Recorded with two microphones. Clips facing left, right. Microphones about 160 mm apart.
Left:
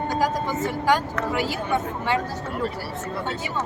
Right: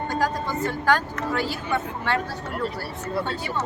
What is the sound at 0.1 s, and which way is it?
Speech, 10° left (ahead or behind).